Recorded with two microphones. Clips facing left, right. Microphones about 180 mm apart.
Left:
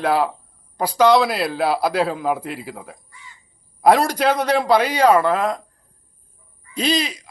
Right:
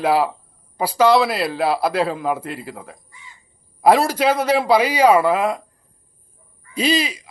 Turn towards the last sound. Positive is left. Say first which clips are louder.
# right 2 dB
turn(degrees=-5)  # may be behind; listen again after turning